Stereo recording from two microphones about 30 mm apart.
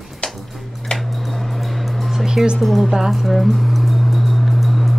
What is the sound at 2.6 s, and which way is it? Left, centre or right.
Speech, centre.